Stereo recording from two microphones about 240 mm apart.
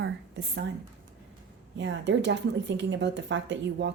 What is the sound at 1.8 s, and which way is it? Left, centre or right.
Speech, right.